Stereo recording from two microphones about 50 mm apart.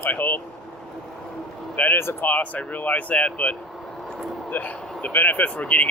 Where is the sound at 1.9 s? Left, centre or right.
Left.